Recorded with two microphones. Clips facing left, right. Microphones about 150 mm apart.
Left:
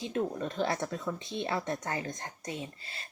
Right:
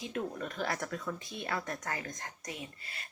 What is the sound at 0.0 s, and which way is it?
Speech, 30° left (ahead or behind).